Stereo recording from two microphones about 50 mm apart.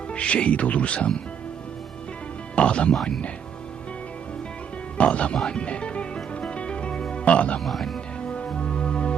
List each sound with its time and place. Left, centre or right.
0.1 s speech: left
2.6 s music: left
4.9 s speech: left
5.5 s music: left
7.6 s speech: centre
8.2 s music: left